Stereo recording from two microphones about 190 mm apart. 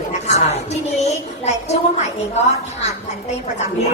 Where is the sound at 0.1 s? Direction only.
35° left (ahead or behind).